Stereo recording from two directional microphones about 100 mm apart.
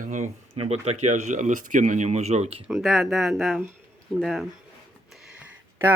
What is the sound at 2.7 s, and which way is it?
Speech, centre (ahead or behind).